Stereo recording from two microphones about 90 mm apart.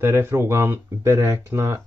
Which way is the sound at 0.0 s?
25° right (ahead or behind).